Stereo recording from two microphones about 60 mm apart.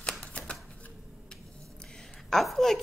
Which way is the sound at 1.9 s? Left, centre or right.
Centre.